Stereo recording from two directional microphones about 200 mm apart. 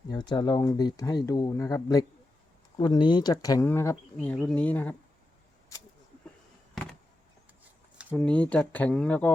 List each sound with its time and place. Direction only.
0.1 s speech: 20° left (ahead or behind)
7.9 s speech: centre (ahead or behind)